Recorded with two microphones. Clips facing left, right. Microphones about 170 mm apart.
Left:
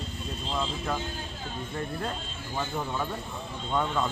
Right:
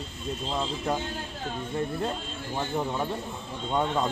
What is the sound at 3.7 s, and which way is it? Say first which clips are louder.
Speech: right 2 dB; 30° right (ahead or behind).